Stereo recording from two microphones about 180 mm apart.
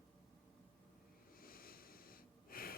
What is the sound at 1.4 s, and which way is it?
Wheeze, 55° left (ahead or behind).